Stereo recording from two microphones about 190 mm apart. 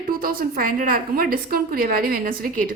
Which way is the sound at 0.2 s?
50° right (ahead or behind).